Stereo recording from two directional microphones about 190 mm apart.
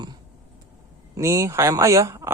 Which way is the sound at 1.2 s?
15° right (ahead or behind).